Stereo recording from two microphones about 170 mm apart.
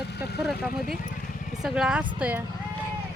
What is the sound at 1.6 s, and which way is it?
Speech, 5° right (ahead or behind).